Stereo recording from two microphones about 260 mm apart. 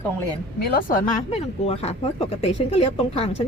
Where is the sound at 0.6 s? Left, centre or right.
Left.